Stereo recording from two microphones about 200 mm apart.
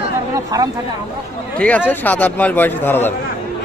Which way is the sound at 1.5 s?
5° left (ahead or behind).